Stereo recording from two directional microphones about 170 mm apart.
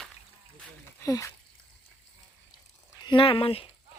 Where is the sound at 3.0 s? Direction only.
30° left (ahead or behind).